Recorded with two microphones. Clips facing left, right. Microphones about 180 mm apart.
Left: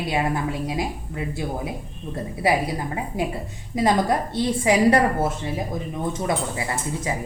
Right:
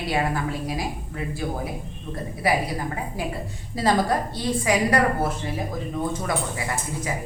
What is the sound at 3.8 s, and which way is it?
A woman's voice, 20° left (ahead or behind).